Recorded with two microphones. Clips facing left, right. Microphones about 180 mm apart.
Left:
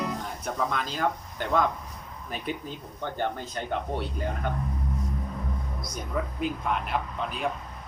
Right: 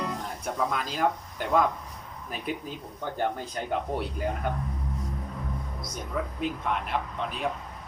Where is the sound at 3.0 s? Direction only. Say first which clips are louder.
Right 1 dB; 5° right (ahead or behind).